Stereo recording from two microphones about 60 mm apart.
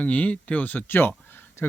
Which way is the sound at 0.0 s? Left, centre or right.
Left.